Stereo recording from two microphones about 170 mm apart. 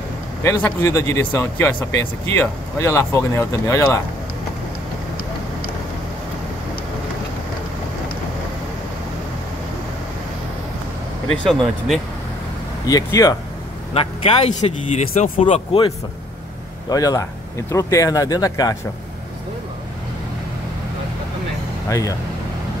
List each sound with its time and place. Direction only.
0.4 s speech: 15° left (ahead or behind)
11.2 s speech: 5° left (ahead or behind)
12.8 s speech: 20° left (ahead or behind)
13.9 s speech: 40° left (ahead or behind)
16.9 s speech: 20° left (ahead or behind)
21.8 s speech: 20° left (ahead or behind)